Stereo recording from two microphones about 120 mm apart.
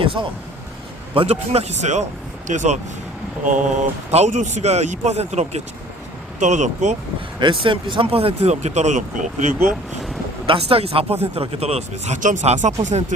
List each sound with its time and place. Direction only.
0.0 s a sound: 50° right (ahead or behind)
1.1 s speech: 55° right (ahead or behind); by 2.0 s 75° right (ahead or behind)
2.5 s speech: 90° right
4.1 s speech: 80° right
6.4 s speech: 80° right
7.3 s speech: 45° right (ahead or behind); by 9.7 s 90° right
10.4 s speech: 50° right (ahead or behind); by 13.1 s 80° right